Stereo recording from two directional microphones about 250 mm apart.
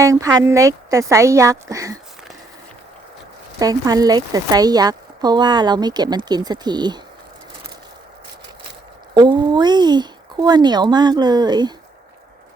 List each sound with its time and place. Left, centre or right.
0.0 s speech: centre
3.6 s speech: centre
9.1 s speech: centre